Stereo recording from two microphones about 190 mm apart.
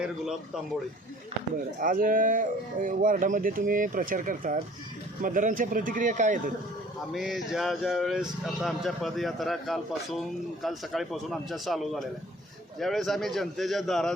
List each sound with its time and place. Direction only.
0.0 s speech: 5° right (ahead or behind)
1.8 s speech: 45° right (ahead or behind)
7.1 s speech: centre (ahead or behind)